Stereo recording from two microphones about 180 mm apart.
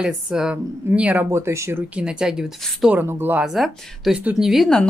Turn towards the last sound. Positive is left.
turn(degrees=0)  # may be behind; listen again after turning